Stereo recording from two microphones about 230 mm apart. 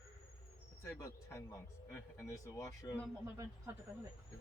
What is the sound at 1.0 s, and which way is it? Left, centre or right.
Speech, centre.